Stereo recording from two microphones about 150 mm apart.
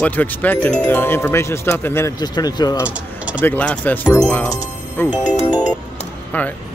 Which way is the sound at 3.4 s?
10° left (ahead or behind).